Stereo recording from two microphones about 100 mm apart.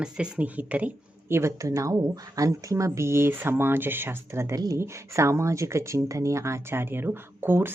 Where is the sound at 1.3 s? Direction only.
25° right (ahead or behind).